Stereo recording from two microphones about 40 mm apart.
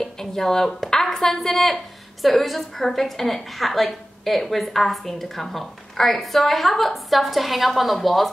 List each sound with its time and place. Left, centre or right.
0.0 s a woman's voice: centre